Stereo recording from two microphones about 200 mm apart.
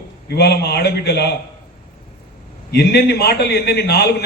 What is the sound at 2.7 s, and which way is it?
A man's voice, 55° left (ahead or behind).